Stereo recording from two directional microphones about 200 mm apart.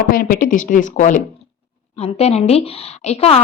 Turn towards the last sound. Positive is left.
turn(degrees=30)  # may be behind; listen again after turning